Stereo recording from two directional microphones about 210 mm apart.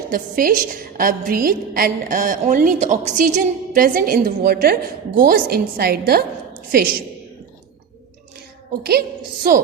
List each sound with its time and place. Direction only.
0.1 s a woman's voice: 40° right (ahead or behind)
8.8 s a woman's voice: 50° right (ahead or behind)